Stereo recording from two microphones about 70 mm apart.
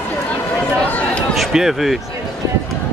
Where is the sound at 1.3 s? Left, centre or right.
Centre.